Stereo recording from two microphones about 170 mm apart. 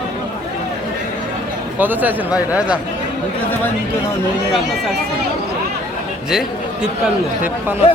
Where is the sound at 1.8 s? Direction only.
10° right (ahead or behind).